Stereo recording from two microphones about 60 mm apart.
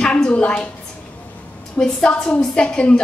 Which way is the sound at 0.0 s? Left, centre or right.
Centre.